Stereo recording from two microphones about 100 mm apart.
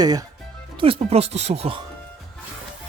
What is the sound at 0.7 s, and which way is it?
Speech, 70° right (ahead or behind).